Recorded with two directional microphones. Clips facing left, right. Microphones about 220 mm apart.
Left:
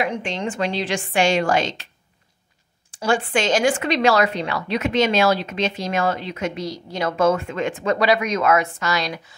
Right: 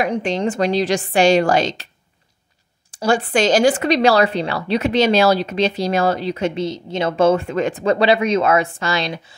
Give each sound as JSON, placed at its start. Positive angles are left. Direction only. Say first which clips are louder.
{"t": 0.0, "sound": "speech", "louder": "right 5 dB", "side_deg": -35}
{"t": 2.9, "sound": "speech", "louder": "right 3 dB", "side_deg": -40}